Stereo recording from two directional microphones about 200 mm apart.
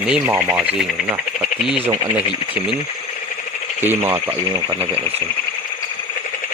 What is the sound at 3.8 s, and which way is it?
Speech, 10° right (ahead or behind).